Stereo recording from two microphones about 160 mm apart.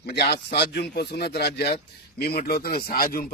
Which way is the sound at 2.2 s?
75° left (ahead or behind).